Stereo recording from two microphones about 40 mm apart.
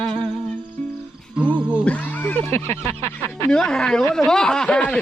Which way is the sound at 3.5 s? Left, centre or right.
Centre.